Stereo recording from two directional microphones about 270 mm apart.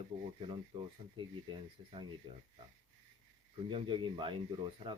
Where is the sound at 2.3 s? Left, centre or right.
Centre.